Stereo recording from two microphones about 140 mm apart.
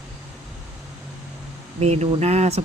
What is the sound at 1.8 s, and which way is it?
Speech, 50° right (ahead or behind).